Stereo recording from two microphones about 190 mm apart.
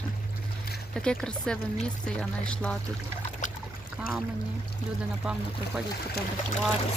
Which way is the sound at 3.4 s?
40° left (ahead or behind).